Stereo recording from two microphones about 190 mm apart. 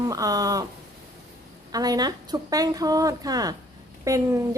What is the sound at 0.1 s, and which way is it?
Speech, 20° right (ahead or behind).